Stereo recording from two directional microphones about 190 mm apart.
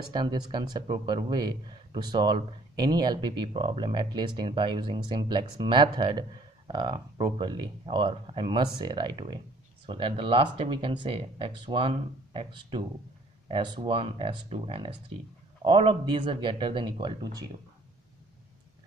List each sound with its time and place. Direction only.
0.1 s speech: 25° right (ahead or behind)